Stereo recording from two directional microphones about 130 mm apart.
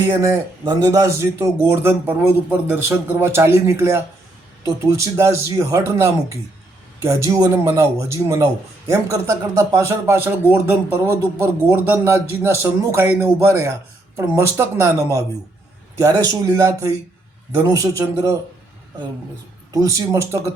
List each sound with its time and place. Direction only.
0.1 s a man's voice: 25° right (ahead or behind)
19.7 s a man's voice: 25° right (ahead or behind)